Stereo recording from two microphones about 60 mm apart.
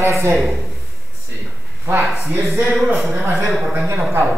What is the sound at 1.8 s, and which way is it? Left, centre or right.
Speech, right.